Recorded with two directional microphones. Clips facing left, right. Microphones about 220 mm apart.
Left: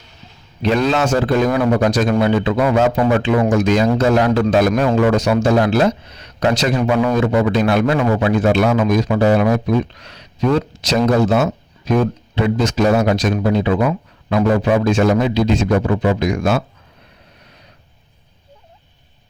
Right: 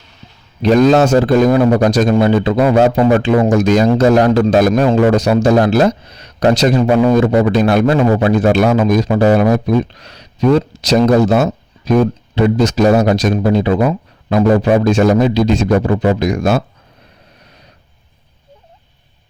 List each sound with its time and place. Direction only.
0.6 s speech: 40° right (ahead or behind)